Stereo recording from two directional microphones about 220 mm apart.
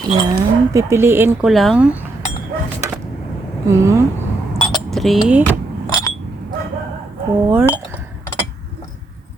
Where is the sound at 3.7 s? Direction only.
15° right (ahead or behind).